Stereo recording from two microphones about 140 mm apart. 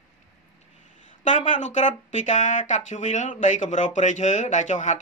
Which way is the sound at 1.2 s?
60° left (ahead or behind).